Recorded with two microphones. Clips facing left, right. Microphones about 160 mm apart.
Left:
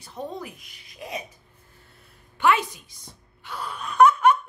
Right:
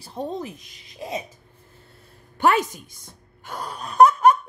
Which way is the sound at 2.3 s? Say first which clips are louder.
Right 2 dB; 40° right (ahead or behind).